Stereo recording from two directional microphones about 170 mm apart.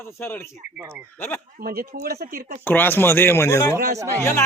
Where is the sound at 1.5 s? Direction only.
60° right (ahead or behind).